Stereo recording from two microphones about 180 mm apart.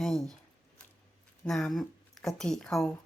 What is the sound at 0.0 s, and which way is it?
Speech, centre (ahead or behind).